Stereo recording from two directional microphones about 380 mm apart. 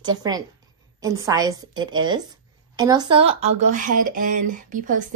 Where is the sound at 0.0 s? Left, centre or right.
Centre.